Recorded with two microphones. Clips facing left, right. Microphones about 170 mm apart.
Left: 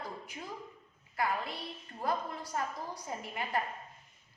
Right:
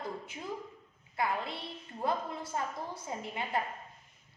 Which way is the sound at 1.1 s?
25° right (ahead or behind).